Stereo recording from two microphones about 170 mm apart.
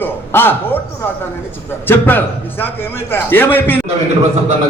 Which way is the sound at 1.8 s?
10° left (ahead or behind).